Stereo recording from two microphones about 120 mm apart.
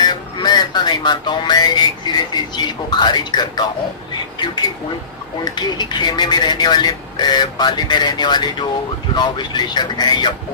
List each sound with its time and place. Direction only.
0.0 s music: 35° left (ahead or behind)
4.4 s speech: 35° left (ahead or behind)